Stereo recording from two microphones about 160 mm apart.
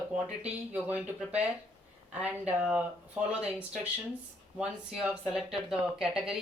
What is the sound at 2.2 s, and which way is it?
Speech, 10° right (ahead or behind).